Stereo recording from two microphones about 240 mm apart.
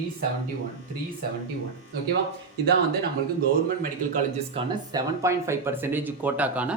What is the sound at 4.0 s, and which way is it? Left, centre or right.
Speech, right.